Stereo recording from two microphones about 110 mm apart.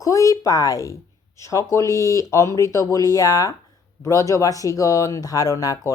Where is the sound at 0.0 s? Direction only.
30° left (ahead or behind).